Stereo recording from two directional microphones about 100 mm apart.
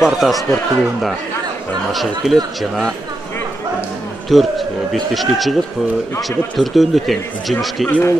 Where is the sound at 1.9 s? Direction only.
Centre (ahead or behind).